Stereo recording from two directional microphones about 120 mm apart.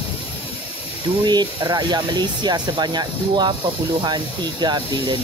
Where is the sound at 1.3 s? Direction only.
35° right (ahead or behind).